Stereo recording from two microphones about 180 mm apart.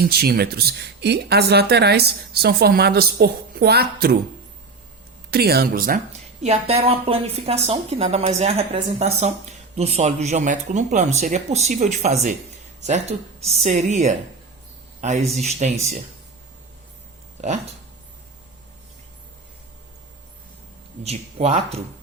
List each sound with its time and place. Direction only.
0.0 s speech: 60° right (ahead or behind)
5.3 s speech: 60° right (ahead or behind)
6.1 s speech: 35° right (ahead or behind)
21.0 s speech: 35° right (ahead or behind)